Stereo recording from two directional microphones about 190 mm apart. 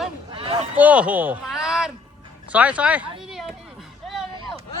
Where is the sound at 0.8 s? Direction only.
10° right (ahead or behind).